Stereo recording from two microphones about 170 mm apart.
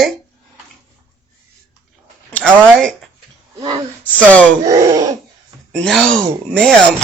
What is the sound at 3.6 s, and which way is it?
Speech, 25° right (ahead or behind).